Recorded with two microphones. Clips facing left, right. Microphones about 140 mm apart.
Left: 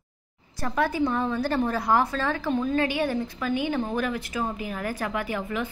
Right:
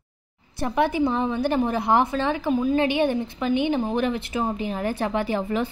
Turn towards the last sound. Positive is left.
turn(degrees=-30)  # may be behind; listen again after turning